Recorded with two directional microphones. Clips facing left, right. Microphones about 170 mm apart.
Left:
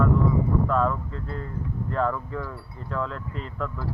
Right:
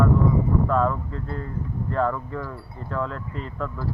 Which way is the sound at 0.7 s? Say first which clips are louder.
Right 2 dB; 5° right (ahead or behind).